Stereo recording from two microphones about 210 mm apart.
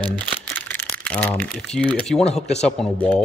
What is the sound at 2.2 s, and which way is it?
Speech, 30° left (ahead or behind).